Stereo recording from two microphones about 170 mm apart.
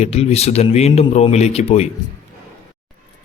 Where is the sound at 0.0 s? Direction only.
40° left (ahead or behind).